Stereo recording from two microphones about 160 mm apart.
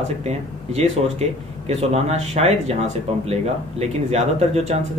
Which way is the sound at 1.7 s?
45° right (ahead or behind).